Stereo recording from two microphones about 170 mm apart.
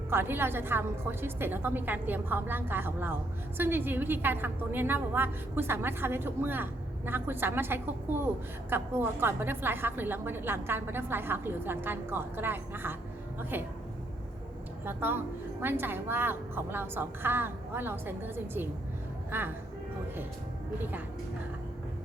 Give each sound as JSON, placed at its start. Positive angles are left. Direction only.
{"t": 0.1, "sound": "a woman's voice", "side_deg": -15}
{"t": 14.8, "sound": "a woman's voice", "side_deg": -15}